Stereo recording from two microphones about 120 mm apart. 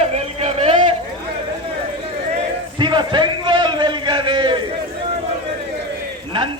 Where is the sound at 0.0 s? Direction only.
60° right (ahead or behind).